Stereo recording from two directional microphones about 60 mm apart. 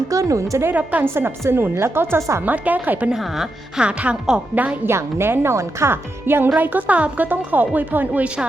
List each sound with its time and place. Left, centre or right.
0.1 s speech: right
0.7 s speech: right
1.0 s a woman's voice: right
2.4 s speech: right
3.1 s speech: centre
3.8 s speech: centre
4.9 s speech: right
6.2 s a woman's voice: right